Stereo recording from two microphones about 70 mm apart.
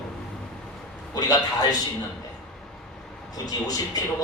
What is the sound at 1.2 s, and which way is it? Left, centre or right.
Speech, left.